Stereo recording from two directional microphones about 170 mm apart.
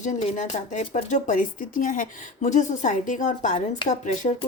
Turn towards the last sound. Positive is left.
turn(degrees=45)  # may be behind; listen again after turning